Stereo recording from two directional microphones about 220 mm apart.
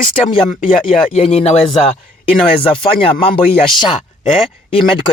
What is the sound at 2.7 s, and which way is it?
Speech, 25° left (ahead or behind).